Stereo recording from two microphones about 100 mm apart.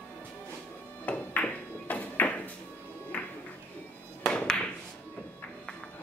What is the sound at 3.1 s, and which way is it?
Music, 10° left (ahead or behind).